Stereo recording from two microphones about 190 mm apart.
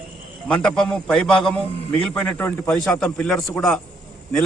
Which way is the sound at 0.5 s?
5° left (ahead or behind).